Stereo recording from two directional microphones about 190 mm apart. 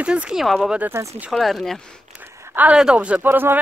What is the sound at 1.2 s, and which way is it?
Speech, centre (ahead or behind).